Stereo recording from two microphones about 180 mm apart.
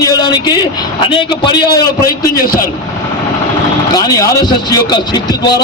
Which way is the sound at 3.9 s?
20° left (ahead or behind).